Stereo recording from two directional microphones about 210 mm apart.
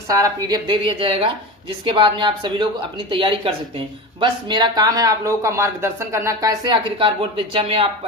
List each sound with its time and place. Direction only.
0.1 s speech: 15° right (ahead or behind)